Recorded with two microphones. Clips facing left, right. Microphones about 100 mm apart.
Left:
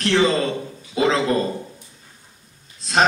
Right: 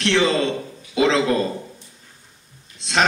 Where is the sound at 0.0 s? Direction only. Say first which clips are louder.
Even; 35° left (ahead or behind).